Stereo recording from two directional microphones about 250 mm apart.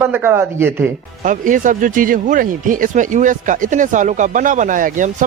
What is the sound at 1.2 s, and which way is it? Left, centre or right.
Speech, right.